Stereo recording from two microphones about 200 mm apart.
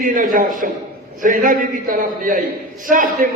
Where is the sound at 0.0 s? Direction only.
40° right (ahead or behind).